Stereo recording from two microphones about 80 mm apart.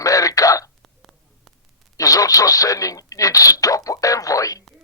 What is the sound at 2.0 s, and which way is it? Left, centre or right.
Speech, left.